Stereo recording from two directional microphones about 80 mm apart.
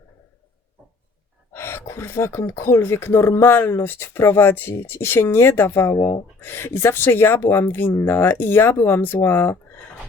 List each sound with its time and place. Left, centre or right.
1.5 s speech: left